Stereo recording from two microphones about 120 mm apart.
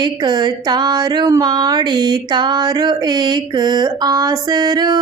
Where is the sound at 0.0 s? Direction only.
40° right (ahead or behind).